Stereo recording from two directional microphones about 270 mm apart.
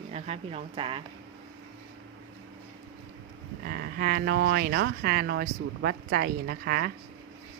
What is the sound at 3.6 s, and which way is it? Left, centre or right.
Speech, right.